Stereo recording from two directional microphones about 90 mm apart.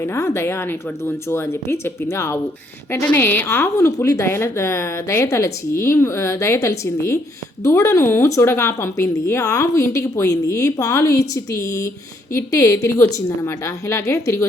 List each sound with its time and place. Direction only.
0.0 s speech: 30° left (ahead or behind)
3.0 s speech: 15° left (ahead or behind); by 4.3 s 40° left (ahead or behind)
4.3 s a woman's voice: 30° left (ahead or behind)